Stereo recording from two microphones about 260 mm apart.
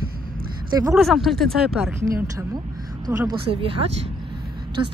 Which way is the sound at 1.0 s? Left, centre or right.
Centre.